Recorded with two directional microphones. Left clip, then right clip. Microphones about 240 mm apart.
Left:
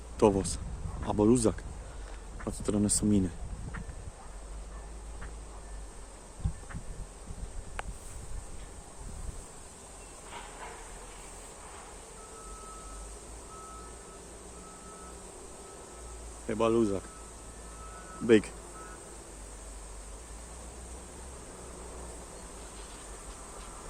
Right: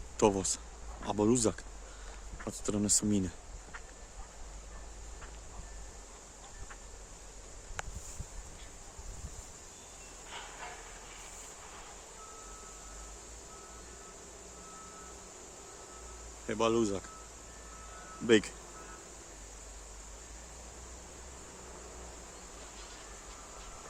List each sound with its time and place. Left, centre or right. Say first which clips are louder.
0.2 s speech: left 3 dB; centre
7.8 s a sound: left 2 dB; centre
16.5 s speech: left 3 dB; centre
18.3 s speech: left 3 dB; centre